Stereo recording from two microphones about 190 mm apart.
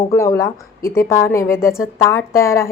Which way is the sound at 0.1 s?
15° left (ahead or behind).